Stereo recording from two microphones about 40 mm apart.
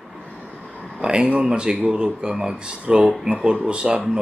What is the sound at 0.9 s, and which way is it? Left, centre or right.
Speech, right.